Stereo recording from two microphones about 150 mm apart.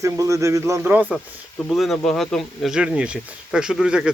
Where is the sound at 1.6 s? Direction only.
Centre (ahead or behind).